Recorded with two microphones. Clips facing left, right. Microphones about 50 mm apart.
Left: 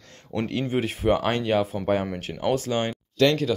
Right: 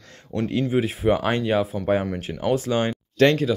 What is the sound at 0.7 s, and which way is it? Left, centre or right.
Speech, centre.